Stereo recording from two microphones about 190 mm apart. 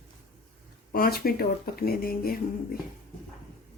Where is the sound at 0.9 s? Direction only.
50° left (ahead or behind).